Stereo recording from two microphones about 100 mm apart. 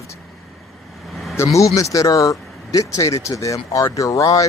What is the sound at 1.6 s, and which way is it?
Speech, 35° left (ahead or behind).